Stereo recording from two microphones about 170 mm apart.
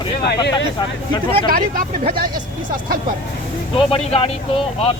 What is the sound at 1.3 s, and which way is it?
Speech, 55° right (ahead or behind).